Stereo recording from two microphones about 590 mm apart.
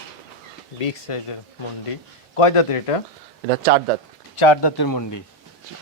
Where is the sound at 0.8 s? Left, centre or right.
Left.